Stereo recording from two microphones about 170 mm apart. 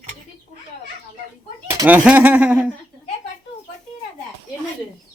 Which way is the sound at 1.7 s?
10° right (ahead or behind).